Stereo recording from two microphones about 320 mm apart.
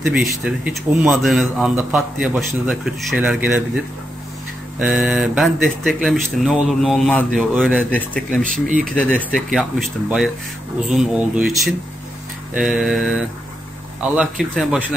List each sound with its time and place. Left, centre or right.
0.0 s a man's voice: centre
8.5 s speech: right
8.8 s a man's voice: centre
14.5 s a man's voice: centre